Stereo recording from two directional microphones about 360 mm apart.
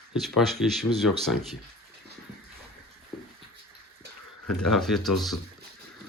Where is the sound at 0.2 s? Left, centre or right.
Centre.